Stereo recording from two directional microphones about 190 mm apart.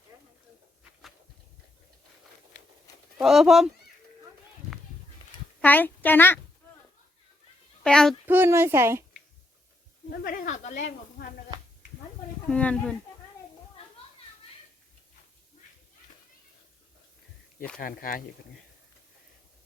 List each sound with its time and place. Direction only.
3.2 s speech: centre (ahead or behind)
5.6 s a child's voice: 10° left (ahead or behind)
7.9 s speech: 5° left (ahead or behind)
8.3 s a child's voice: 10° right (ahead or behind)
10.1 s speech: 45° left (ahead or behind)
12.5 s speech: 5° left (ahead or behind)
17.7 s speech: 50° left (ahead or behind)